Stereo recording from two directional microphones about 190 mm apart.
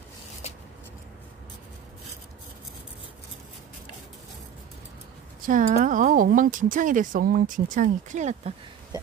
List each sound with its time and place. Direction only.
5.4 s speech: 45° right (ahead or behind)